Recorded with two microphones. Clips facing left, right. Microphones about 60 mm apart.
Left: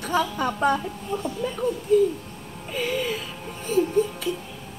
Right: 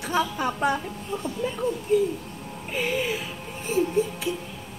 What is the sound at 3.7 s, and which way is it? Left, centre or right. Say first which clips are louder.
Speech: left 2 dB; left.